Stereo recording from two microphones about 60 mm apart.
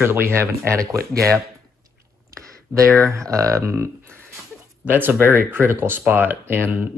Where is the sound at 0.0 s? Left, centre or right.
Right.